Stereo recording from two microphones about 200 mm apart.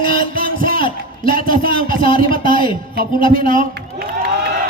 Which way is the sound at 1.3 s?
45° right (ahead or behind).